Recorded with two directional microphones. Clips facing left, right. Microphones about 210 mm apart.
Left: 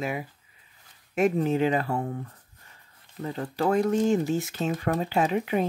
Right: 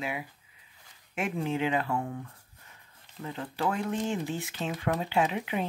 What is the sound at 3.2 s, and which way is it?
Speech, 40° left (ahead or behind).